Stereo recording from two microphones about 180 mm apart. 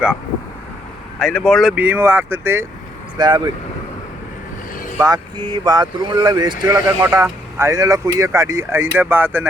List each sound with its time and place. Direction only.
1.2 s speech: 5° left (ahead or behind); by 2.6 s 15° right (ahead or behind)
3.2 s speech: 25° right (ahead or behind)
5.0 s speech: 25° right (ahead or behind)